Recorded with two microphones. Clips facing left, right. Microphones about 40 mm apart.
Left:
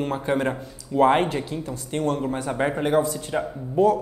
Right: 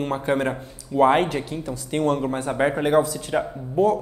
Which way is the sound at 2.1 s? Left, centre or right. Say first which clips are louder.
Right 2 dB; right.